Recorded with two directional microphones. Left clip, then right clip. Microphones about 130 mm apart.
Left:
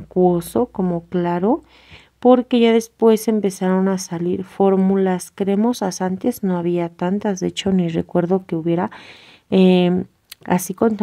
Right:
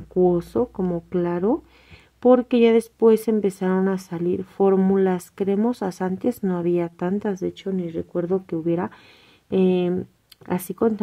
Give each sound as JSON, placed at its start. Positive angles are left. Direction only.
{"t": 0.1, "sound": "speech", "side_deg": 25}
{"t": 7.6, "sound": "speech", "side_deg": 50}
{"t": 8.5, "sound": "speech", "side_deg": 25}